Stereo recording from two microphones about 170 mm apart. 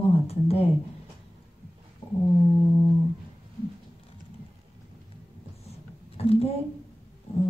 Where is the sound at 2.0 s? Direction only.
30° left (ahead or behind).